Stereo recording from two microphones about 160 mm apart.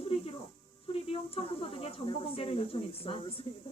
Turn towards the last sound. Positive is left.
turn(degrees=35)  # may be behind; listen again after turning